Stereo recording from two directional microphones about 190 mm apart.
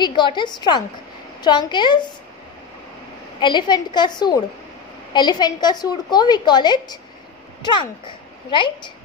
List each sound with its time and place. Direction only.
0.0 s a woman's voice: 25° left (ahead or behind)
3.3 s a woman's voice: 25° left (ahead or behind)